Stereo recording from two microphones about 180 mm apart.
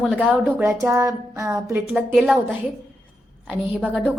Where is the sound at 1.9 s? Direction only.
Centre (ahead or behind).